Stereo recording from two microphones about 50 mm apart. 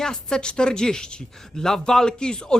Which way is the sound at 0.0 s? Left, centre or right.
Centre.